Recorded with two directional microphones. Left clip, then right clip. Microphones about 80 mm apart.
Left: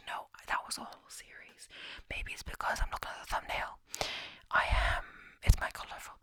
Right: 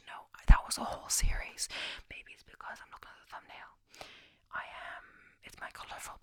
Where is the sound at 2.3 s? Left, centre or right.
Left.